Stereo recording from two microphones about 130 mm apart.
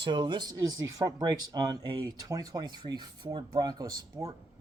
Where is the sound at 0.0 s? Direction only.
35° right (ahead or behind).